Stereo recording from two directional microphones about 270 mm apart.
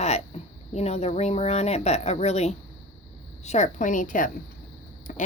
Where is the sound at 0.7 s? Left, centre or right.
Left.